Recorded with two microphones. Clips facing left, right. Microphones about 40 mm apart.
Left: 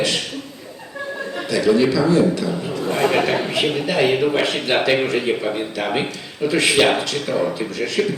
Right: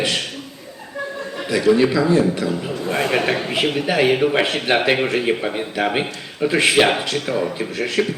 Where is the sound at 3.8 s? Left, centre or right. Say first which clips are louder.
Right 2 dB; centre.